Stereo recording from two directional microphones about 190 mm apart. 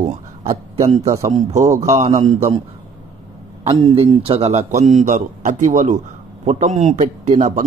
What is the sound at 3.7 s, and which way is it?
Speech, 30° right (ahead or behind).